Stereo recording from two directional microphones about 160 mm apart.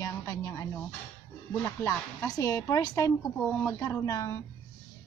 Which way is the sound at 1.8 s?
20° left (ahead or behind).